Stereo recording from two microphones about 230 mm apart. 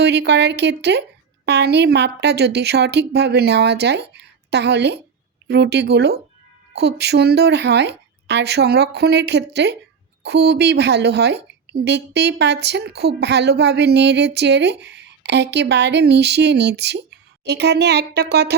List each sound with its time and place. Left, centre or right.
0.0 s speech: right